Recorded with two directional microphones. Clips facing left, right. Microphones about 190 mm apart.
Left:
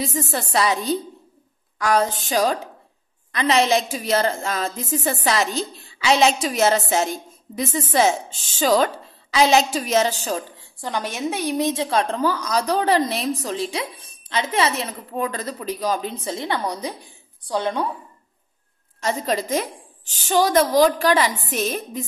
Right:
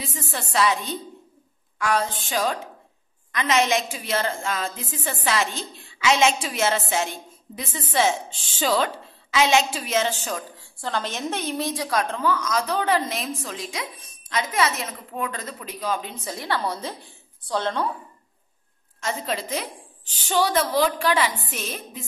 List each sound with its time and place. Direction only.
0.0 s a woman's voice: 40° left (ahead or behind)
10.8 s a woman's voice: 15° left (ahead or behind); by 16.3 s 35° left (ahead or behind)
16.3 s a woman's voice: 20° left (ahead or behind)
18.9 s a woman's voice: 40° left (ahead or behind)